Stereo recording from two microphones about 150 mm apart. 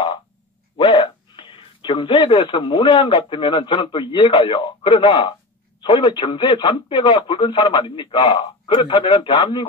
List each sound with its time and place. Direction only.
0.7 s speech: 35° left (ahead or behind)